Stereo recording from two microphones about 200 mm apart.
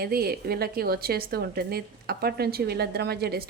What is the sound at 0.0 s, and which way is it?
Speech, 50° right (ahead or behind).